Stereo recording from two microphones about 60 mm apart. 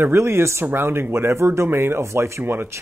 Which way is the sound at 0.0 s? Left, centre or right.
Right.